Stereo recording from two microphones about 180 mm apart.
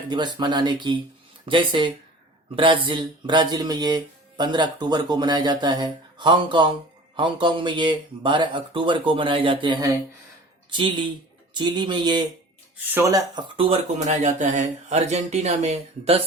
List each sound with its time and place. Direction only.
0.1 s speech: 25° right (ahead or behind)
13.6 s speech: 35° right (ahead or behind)